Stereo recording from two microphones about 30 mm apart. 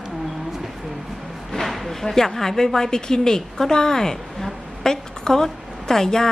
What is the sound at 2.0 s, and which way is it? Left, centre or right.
A woman's voice, centre.